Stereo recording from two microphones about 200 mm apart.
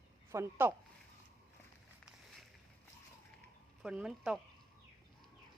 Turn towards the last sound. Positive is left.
turn(degrees=-5)  # may be behind; listen again after turning